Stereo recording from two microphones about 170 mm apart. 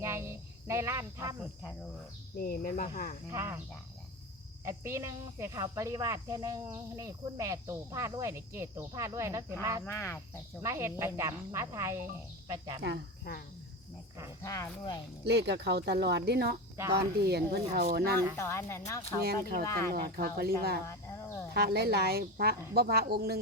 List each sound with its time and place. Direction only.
0.0 s speech: 15° right (ahead or behind)
2.4 s cricket: 60° left (ahead or behind)
3.3 s speech: 15° right (ahead or behind)
4.6 s speech: 15° right (ahead or behind)
9.8 s a woman's voice: 15° left (ahead or behind)
10.6 s speech: 15° right (ahead or behind)
14.4 s speech: 20° left (ahead or behind)
15.2 s speech: 80° right
18.3 s a woman's voice: 15° left (ahead or behind)
19.2 s speech: 60° right (ahead or behind)
19.6 s a woman's voice: 15° left (ahead or behind)
19.9 s speech: 60° right (ahead or behind)
20.8 s cricket: 15° left (ahead or behind)
21.5 s speech: 65° right (ahead or behind)